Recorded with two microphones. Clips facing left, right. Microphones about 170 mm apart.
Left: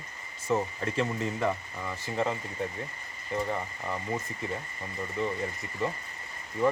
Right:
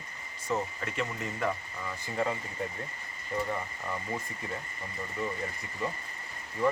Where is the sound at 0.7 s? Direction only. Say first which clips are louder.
Left 5 dB; 30° left (ahead or behind).